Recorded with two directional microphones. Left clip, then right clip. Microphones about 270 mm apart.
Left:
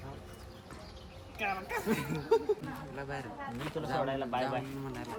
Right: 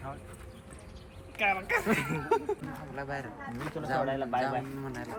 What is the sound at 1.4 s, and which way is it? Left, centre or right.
Speech, centre.